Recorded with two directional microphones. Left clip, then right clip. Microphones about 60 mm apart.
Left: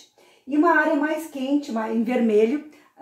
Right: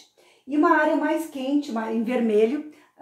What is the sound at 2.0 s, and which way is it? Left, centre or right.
Speech, left.